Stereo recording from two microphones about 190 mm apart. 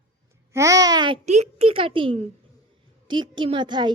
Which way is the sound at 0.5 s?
15° right (ahead or behind).